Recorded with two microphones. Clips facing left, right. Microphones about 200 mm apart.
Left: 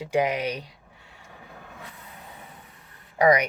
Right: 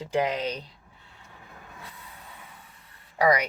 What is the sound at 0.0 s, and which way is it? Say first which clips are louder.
Speech: left 2 dB; 10° left (ahead or behind).